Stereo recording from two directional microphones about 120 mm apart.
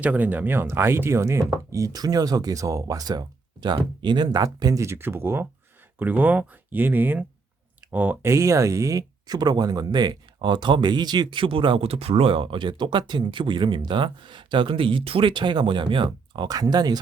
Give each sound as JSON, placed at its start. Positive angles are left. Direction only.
{"t": 0.0, "sound": "speech", "side_deg": -15}